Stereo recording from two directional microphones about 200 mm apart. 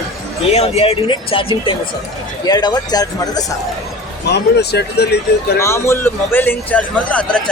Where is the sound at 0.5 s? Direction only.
30° left (ahead or behind).